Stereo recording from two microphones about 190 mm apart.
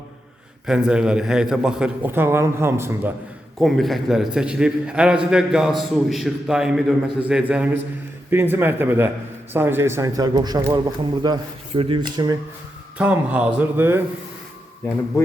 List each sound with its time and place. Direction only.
0.7 s a man's voice: 5° right (ahead or behind)
3.6 s a man's voice: centre (ahead or behind); by 12.4 s 20° right (ahead or behind)
13.0 s a man's voice: 5° right (ahead or behind)